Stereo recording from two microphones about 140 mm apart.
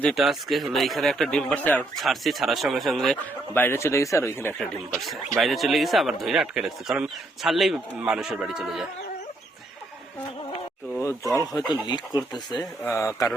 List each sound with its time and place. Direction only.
0.0 s speech: centre (ahead or behind)
2.0 s speech: centre (ahead or behind)
3.5 s speech: 15° left (ahead or behind)
4.9 s speech: centre (ahead or behind)
11.2 s speech: 20° right (ahead or behind)
11.6 s speech: centre (ahead or behind)
11.9 s speech: 30° left (ahead or behind)
12.8 s speech: 20° left (ahead or behind)